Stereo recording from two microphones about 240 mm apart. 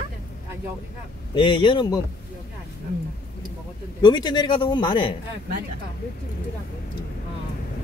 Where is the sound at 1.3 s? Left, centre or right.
Left.